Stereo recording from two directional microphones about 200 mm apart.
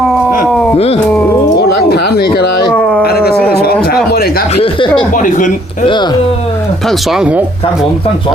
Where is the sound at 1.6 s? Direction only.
55° left (ahead or behind).